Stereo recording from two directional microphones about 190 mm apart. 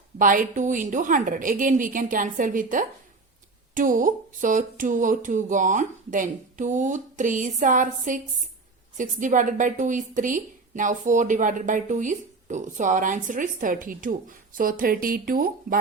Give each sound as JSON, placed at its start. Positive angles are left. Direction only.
{"t": 0.2, "sound": "a woman's voice", "side_deg": -45}